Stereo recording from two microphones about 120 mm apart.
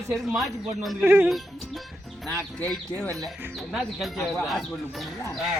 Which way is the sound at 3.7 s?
Centre (ahead or behind).